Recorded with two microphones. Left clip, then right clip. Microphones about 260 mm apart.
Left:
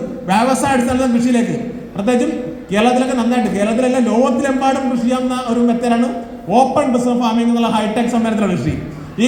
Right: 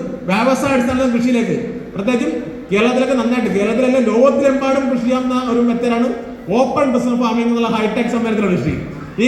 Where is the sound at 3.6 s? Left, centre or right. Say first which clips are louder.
Right 3 dB; left.